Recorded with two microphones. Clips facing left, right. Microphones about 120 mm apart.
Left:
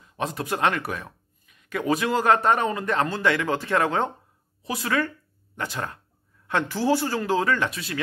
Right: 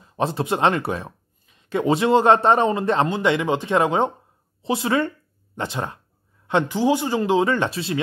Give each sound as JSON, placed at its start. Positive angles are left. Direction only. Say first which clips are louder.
{"t": 0.0, "sound": "speech", "louder": "right 6 dB", "side_deg": -30}